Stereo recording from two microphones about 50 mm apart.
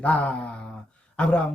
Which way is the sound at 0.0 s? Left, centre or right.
Left.